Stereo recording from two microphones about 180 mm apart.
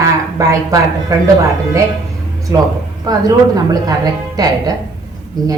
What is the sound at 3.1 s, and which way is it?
A woman's voice, 20° right (ahead or behind).